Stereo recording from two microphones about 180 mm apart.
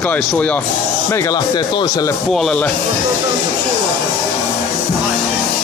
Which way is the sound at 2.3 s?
5° left (ahead or behind).